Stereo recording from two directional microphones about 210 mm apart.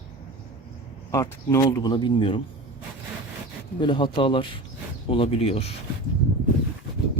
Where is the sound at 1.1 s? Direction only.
15° left (ahead or behind).